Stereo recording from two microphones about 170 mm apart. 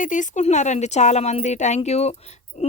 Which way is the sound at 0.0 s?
50° left (ahead or behind).